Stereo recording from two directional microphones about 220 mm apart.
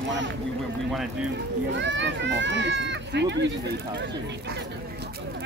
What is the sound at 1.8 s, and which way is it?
Speech, 55° right (ahead or behind).